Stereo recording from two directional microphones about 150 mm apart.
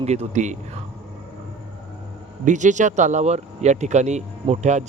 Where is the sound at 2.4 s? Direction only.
55° right (ahead or behind).